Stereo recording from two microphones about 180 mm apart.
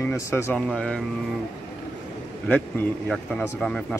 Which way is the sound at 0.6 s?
5° left (ahead or behind).